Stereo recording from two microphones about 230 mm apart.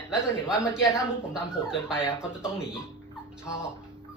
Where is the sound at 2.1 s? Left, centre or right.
Centre.